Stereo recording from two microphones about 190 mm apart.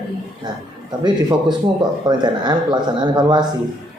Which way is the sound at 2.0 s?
20° right (ahead or behind).